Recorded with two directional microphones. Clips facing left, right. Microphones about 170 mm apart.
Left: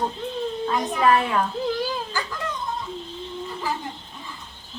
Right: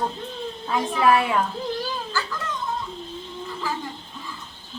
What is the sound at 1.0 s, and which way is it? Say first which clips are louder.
Speech: right 1 dB; 10° right (ahead or behind).